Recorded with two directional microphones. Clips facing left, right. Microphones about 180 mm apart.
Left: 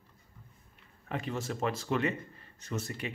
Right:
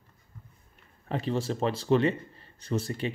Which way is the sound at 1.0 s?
30° right (ahead or behind).